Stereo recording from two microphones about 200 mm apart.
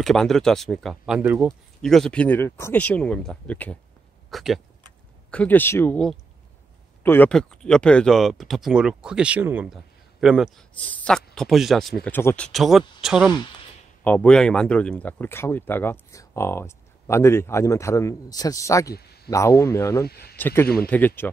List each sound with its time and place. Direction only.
0.0 s speech: centre (ahead or behind)
20.1 s speech: 50° left (ahead or behind)
20.3 s a man's voice: 10° left (ahead or behind)